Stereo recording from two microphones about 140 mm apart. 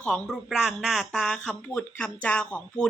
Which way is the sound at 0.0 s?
5° left (ahead or behind).